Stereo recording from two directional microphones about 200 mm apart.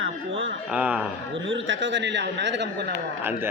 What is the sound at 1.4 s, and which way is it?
A man's voice, 70° right (ahead or behind).